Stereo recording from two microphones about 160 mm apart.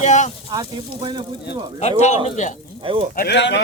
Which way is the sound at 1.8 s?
45° left (ahead or behind).